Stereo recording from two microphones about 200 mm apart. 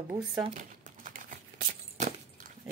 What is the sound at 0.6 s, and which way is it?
Crumpling, 40° right (ahead or behind).